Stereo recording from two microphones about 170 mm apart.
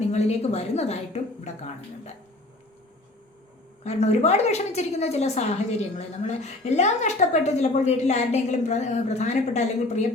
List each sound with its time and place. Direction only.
0.1 s a woman's voice: 40° left (ahead or behind)
3.8 s a woman's voice: 40° left (ahead or behind)